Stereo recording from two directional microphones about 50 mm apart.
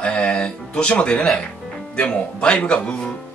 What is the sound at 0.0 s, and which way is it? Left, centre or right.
Music, left.